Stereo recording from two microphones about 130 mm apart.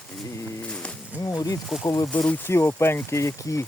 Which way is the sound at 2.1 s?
15° left (ahead or behind).